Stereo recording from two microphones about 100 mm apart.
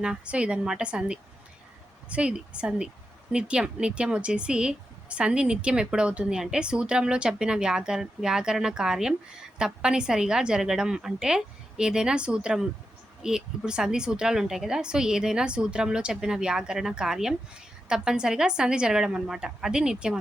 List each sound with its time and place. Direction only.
0.0 s speech: 10° right (ahead or behind)